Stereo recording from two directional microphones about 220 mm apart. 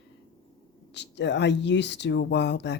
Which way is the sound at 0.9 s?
50° left (ahead or behind).